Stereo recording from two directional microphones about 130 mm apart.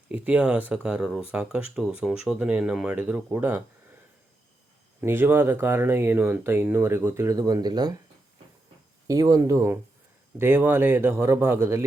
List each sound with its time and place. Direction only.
0.1 s speech: 10° right (ahead or behind)
4.9 s speech: 15° right (ahead or behind); by 7.9 s 30° right (ahead or behind)
9.0 s a man's voice: 25° right (ahead or behind)